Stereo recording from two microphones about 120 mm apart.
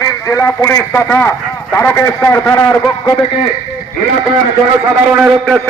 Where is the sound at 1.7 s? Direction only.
20° left (ahead or behind).